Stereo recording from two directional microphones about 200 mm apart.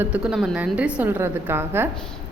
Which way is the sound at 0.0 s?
5° right (ahead or behind).